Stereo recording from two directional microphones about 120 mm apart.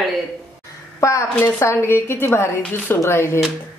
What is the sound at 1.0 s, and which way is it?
A woman's voice, 25° left (ahead or behind).